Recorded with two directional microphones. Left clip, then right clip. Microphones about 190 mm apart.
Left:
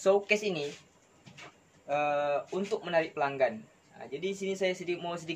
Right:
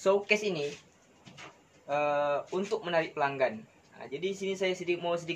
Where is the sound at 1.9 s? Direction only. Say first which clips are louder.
Right 1 dB; 5° right (ahead or behind).